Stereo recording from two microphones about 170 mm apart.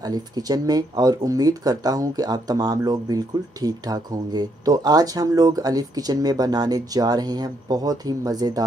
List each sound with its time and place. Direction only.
0.0 s speech: 20° right (ahead or behind)